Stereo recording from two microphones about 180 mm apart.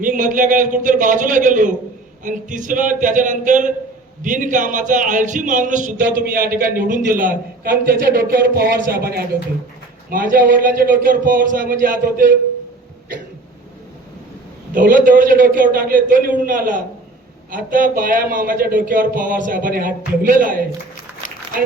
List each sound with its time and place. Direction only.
0.0 s a man's voice: 45° right (ahead or behind)
14.7 s a man's voice: 50° right (ahead or behind)